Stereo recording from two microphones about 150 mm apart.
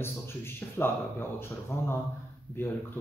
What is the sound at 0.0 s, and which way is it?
Speech, 15° left (ahead or behind).